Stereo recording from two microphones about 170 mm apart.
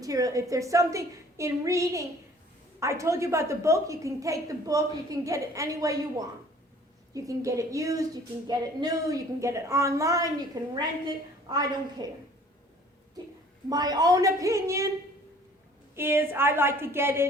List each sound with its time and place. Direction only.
0.0 s a woman's voice: 20° right (ahead or behind)
13.7 s a woman's voice: 20° right (ahead or behind)
16.0 s a woman's voice: 15° right (ahead or behind)